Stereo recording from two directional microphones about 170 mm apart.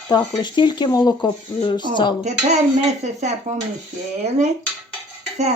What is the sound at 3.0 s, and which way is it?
Speech, 45° right (ahead or behind).